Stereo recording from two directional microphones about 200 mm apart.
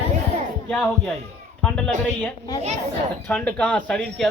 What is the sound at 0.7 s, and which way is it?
Speech, 5° left (ahead or behind).